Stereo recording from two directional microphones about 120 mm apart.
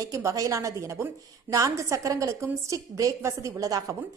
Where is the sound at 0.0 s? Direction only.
25° right (ahead or behind).